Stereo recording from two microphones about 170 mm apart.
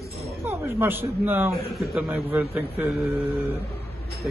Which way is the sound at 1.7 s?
Centre (ahead or behind).